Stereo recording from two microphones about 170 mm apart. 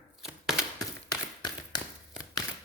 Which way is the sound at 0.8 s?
25° left (ahead or behind).